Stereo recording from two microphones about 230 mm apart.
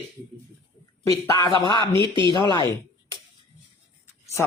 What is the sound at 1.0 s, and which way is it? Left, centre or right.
Speech, centre.